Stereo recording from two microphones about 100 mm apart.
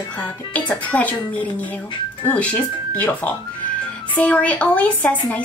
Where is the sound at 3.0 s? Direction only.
15° left (ahead or behind).